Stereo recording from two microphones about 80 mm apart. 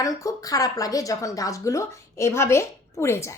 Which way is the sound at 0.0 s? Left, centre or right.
Left.